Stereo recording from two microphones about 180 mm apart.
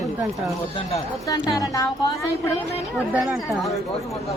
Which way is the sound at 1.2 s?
20° left (ahead or behind).